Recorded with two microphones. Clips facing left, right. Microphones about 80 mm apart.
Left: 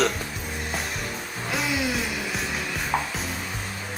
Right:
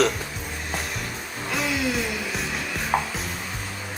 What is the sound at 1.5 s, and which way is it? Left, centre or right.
Music, centre.